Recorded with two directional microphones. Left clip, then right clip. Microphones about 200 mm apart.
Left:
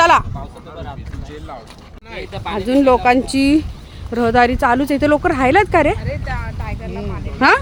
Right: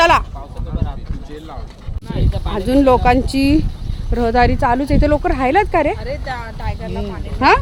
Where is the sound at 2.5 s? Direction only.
Centre (ahead or behind); by 5.9 s 20° left (ahead or behind).